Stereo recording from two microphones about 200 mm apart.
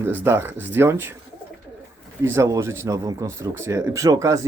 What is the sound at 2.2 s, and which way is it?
Speech, 15° right (ahead or behind).